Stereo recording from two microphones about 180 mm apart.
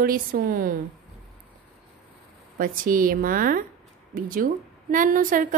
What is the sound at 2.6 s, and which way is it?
Speech, 50° right (ahead or behind).